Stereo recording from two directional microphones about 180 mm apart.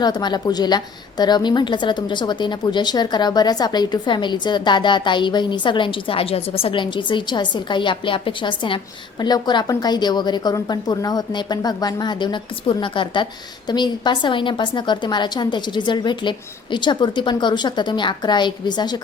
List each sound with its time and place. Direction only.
0.0 s speech: 25° left (ahead or behind)